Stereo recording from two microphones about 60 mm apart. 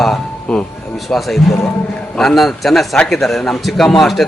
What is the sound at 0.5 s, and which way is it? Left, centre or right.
A man's voice, centre.